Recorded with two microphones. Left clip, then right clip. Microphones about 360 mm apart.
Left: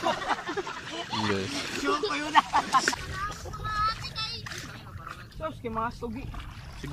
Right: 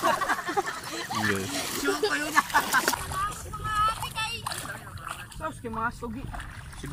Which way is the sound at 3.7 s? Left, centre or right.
Centre.